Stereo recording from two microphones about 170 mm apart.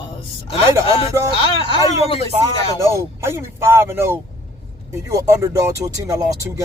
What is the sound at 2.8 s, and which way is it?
Speech, 15° right (ahead or behind).